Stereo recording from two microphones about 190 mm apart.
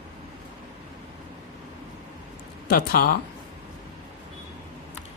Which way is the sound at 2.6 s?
55° left (ahead or behind).